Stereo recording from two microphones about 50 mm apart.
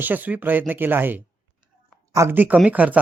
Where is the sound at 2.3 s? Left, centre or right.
Right.